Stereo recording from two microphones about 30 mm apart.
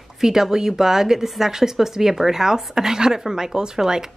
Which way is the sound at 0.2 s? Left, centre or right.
Centre.